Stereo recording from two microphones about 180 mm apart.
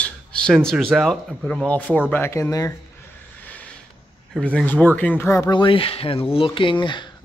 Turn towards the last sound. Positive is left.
turn(degrees=25)  # may be behind; listen again after turning